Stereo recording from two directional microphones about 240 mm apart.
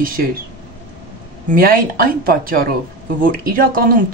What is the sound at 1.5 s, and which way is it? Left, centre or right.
Speech, right.